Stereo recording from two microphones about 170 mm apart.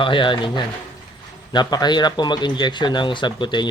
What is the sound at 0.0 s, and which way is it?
Speech, 30° left (ahead or behind).